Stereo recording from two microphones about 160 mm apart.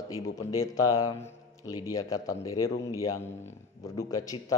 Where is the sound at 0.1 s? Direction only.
20° left (ahead or behind).